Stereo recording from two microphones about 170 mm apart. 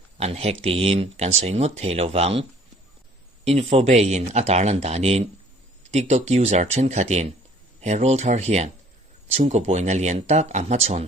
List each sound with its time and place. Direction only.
0.2 s speech: 35° right (ahead or behind)